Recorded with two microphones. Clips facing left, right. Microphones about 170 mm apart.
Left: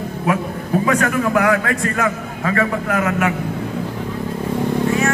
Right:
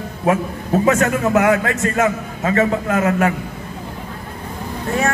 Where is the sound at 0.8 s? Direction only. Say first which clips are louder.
Right 2 dB; 25° right (ahead or behind).